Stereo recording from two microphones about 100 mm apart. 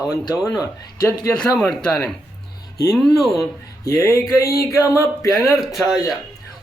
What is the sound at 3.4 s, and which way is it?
Speech, 35° left (ahead or behind).